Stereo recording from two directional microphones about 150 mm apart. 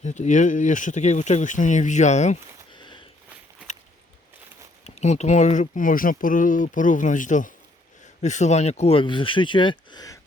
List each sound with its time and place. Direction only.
0.0 s speech: 50° left (ahead or behind)
2.7 s a sound: 30° left (ahead or behind)
4.8 s speech: 45° left (ahead or behind); by 10.2 s 25° left (ahead or behind)